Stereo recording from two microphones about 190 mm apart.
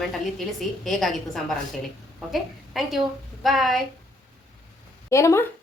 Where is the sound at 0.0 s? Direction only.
Centre (ahead or behind).